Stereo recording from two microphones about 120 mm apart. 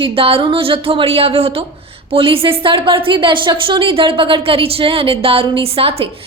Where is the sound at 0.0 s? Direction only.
50° right (ahead or behind).